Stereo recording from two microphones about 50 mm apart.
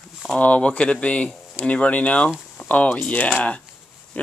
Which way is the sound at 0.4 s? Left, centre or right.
Left.